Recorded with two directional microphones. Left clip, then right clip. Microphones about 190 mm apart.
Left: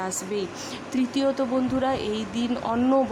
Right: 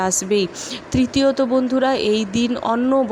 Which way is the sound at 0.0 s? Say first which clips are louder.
Right 10 dB; 25° right (ahead or behind).